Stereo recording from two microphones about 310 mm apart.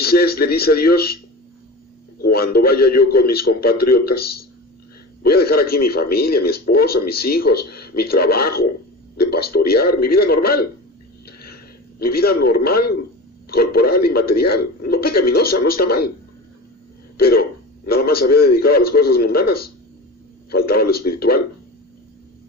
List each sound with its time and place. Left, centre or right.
0.0 s speech: left
2.2 s speech: left
11.3 s a sound: left
11.9 s speech: left
17.2 s speech: left